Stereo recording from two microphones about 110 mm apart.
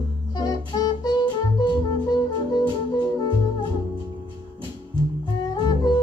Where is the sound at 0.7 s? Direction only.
40° left (ahead or behind).